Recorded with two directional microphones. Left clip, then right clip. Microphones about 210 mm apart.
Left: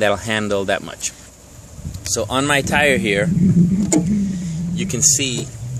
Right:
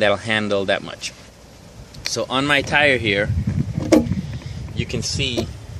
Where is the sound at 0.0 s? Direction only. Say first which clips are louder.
Even; 10° left (ahead or behind).